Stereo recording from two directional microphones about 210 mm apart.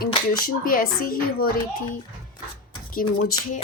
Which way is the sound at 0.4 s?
40° left (ahead or behind).